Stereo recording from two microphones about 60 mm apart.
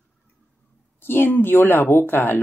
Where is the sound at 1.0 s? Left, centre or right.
Left.